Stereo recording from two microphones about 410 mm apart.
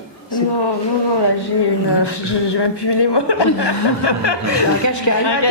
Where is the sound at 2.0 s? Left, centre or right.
Left.